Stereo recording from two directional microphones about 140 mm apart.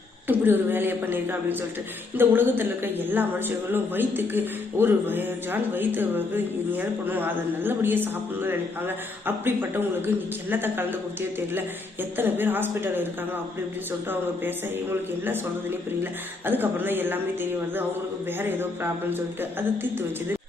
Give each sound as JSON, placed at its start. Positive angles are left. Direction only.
{"t": 0.3, "sound": "a woman's voice", "side_deg": -15}
{"t": 12.1, "sound": "a woman's voice", "side_deg": -15}
{"t": 14.1, "sound": "a woman's voice", "side_deg": -15}
{"t": 16.5, "sound": "a woman's voice", "side_deg": -15}